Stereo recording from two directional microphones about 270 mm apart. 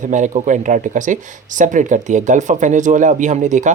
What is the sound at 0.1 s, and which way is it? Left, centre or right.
Speech, right.